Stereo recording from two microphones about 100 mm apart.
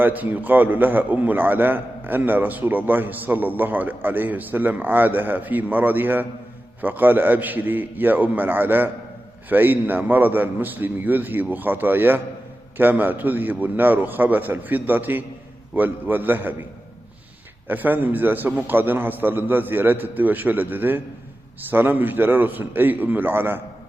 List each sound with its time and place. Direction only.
0.0 s a man's voice: 20° right (ahead or behind)
17.7 s a man's voice: 20° right (ahead or behind)